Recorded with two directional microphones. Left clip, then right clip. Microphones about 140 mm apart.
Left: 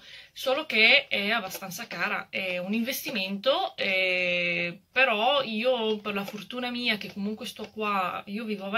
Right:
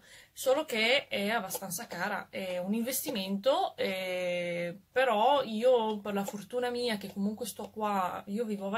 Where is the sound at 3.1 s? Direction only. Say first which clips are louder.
Left 3 dB; 45° right (ahead or behind).